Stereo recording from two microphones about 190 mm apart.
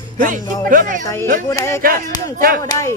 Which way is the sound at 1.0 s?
15° left (ahead or behind).